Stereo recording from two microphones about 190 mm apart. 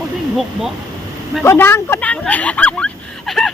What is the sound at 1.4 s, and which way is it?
Speech, 10° left (ahead or behind).